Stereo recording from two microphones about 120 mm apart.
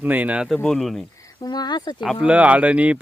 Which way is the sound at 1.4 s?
35° left (ahead or behind).